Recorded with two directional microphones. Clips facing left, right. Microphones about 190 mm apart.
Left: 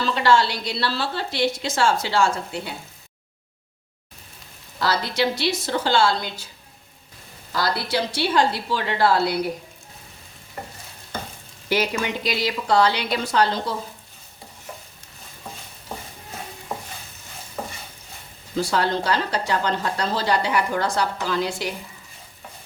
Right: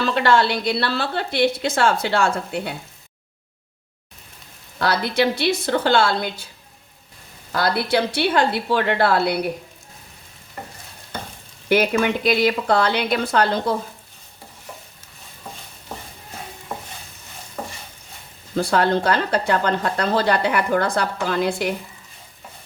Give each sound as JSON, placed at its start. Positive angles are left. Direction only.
{"t": 0.0, "sound": "speech", "side_deg": -55}
{"t": 4.8, "sound": "speech", "side_deg": -55}
{"t": 7.5, "sound": "speech", "side_deg": -55}
{"t": 11.7, "sound": "speech", "side_deg": -55}
{"t": 17.6, "sound": "stir", "side_deg": 5}
{"t": 18.5, "sound": "speech", "side_deg": -55}